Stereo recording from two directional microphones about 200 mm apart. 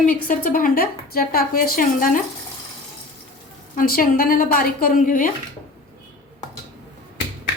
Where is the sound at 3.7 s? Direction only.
45° left (ahead or behind).